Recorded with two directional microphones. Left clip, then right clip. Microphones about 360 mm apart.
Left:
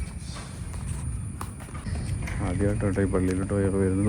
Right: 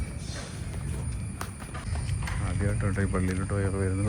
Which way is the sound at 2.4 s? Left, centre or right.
Left.